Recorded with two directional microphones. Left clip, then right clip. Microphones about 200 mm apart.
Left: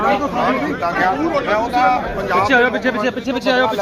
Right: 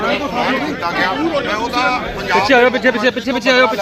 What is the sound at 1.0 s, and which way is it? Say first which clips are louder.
Speech: left 1 dB; 50° left (ahead or behind).